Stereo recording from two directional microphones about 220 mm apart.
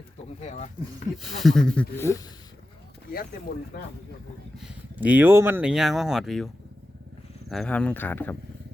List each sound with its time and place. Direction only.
0.4 s speech: 35° left (ahead or behind)
1.2 s speech: centre (ahead or behind)
4.6 s speech: 5° right (ahead or behind)
7.5 s speech: 5° left (ahead or behind)